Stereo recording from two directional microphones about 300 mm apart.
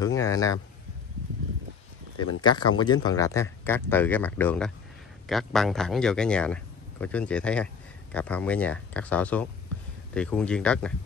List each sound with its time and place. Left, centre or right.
0.2 s speech: centre
2.1 s speech: left
2.8 s speech: centre